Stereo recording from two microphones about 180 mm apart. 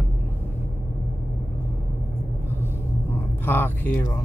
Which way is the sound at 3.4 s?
10° left (ahead or behind).